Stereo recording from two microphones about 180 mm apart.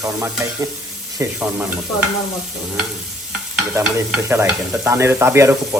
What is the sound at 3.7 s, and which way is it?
Stir, 15° right (ahead or behind).